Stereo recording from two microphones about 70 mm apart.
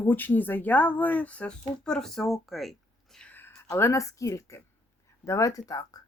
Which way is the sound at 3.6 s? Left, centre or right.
Left.